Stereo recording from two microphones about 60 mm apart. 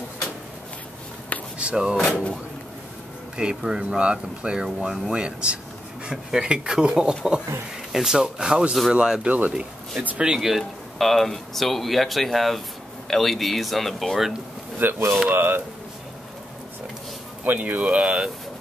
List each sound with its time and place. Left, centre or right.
1.6 s speech: centre
3.3 s speech: centre
14.8 s speech: right
17.5 s speech: right